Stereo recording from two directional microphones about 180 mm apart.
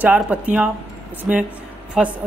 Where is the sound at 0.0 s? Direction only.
10° right (ahead or behind).